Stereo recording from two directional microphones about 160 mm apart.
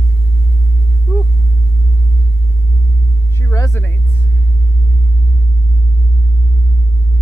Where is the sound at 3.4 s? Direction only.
20° left (ahead or behind).